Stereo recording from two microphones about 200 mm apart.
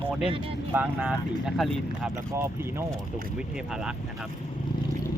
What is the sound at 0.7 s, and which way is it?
Speech, 10° right (ahead or behind).